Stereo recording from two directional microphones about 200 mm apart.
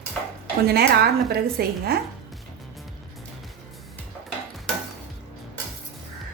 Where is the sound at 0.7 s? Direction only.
50° right (ahead or behind).